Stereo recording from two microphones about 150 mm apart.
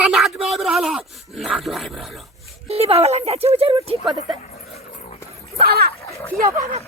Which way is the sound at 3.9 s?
30° right (ahead or behind).